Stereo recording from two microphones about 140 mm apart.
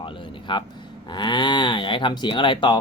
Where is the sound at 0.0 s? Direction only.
35° left (ahead or behind).